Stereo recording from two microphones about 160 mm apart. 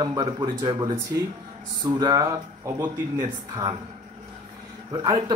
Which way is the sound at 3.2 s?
30° right (ahead or behind).